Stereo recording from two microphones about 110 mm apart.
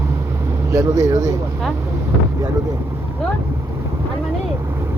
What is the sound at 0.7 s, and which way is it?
Speech, 30° right (ahead or behind).